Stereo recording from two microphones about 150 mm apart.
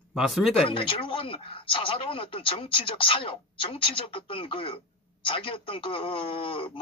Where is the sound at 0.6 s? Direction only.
35° left (ahead or behind).